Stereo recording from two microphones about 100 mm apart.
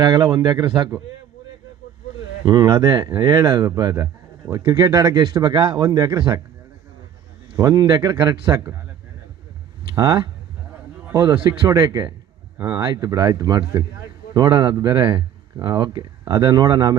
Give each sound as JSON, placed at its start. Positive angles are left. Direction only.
{"t": 0.0, "sound": "speech", "side_deg": -45}
{"t": 2.4, "sound": "speech", "side_deg": -40}
{"t": 7.5, "sound": "speech", "side_deg": -35}
{"t": 9.9, "sound": "speech", "side_deg": -40}
{"t": 11.3, "sound": "speech", "side_deg": -55}
{"t": 11.7, "sound": "speech", "side_deg": -40}